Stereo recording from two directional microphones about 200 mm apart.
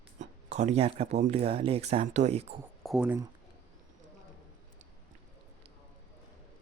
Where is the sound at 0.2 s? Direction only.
35° right (ahead or behind).